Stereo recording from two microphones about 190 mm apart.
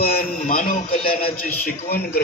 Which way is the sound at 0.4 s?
40° left (ahead or behind).